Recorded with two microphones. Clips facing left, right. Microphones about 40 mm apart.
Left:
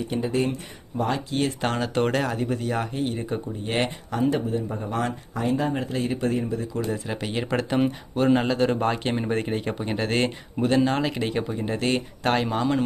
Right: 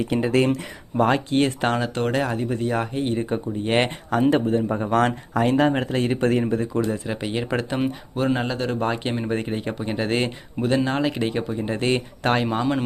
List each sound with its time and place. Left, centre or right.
0.0 s speech: right
1.0 s speech: right
1.6 s speech: centre; by 3.4 s right
3.6 s speech: right
5.7 s speech: right
7.1 s speech: centre